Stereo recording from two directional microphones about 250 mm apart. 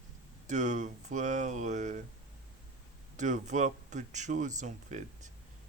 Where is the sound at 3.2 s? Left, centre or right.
Right.